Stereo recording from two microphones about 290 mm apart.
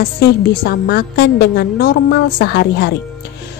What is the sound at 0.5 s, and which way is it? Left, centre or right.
Speech, left.